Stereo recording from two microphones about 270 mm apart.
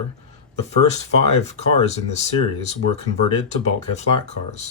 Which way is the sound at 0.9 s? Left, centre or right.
Left.